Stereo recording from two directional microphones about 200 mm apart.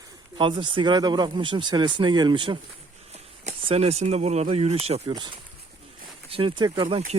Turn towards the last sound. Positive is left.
turn(degrees=-20)  # may be behind; listen again after turning